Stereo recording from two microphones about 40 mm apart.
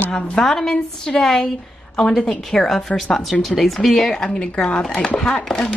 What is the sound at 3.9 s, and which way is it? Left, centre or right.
Speech, centre.